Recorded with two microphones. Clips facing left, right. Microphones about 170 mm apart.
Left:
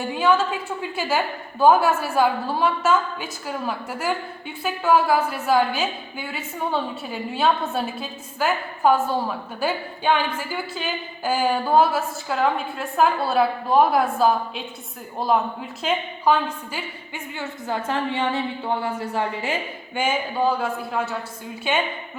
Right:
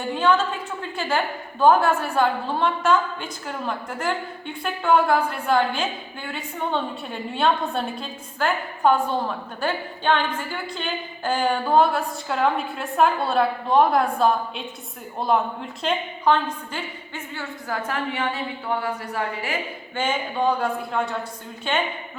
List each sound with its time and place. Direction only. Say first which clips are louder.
0.2 s a woman's voice: left 1 dB; 10° left (ahead or behind)
17.3 s a woman's voice: left 2 dB; 25° left (ahead or behind)
20.0 s a woman's voice: left 1 dB; 5° left (ahead or behind)